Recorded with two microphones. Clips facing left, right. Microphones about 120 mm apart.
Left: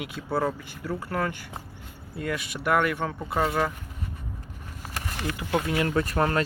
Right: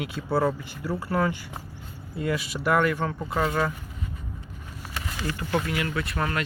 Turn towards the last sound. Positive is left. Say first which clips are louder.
# left 4 dB
turn(degrees=35)  # may be behind; listen again after turning